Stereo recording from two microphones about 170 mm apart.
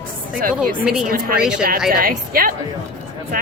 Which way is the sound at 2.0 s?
55° right (ahead or behind).